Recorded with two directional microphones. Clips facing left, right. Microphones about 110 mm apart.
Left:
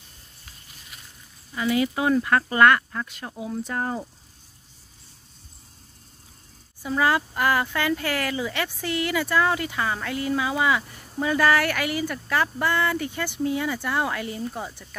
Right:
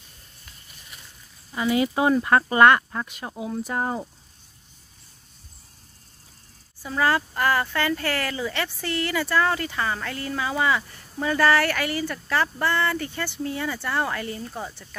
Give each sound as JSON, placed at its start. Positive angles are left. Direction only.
{"t": 1.5, "sound": "speech", "side_deg": -25}
{"t": 6.8, "sound": "speech", "side_deg": 10}